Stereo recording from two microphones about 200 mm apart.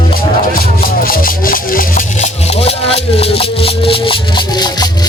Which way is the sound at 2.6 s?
30° left (ahead or behind).